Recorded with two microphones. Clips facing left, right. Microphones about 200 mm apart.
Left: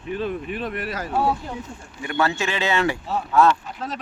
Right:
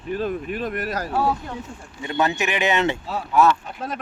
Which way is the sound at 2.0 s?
20° right (ahead or behind).